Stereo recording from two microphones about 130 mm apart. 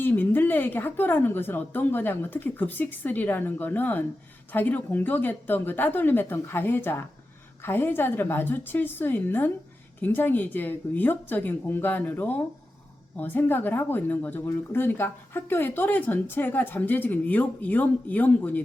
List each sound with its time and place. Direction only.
0.0 s speech: 15° left (ahead or behind)